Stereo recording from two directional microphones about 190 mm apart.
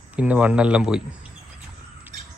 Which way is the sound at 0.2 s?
5° right (ahead or behind).